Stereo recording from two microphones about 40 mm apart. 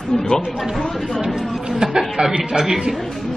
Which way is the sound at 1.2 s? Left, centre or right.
Centre.